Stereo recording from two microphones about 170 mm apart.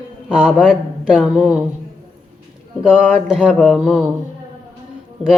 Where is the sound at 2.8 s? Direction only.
5° left (ahead or behind).